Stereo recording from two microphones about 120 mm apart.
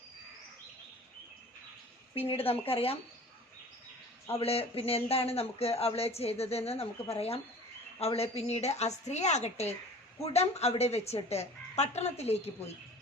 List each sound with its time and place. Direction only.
2.1 s speech: 55° left (ahead or behind)
4.3 s speech: 55° left (ahead or behind)